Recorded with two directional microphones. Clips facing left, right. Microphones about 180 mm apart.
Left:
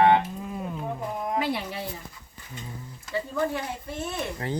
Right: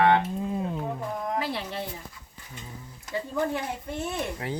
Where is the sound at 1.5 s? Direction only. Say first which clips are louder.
Left 2 dB; 10° left (ahead or behind).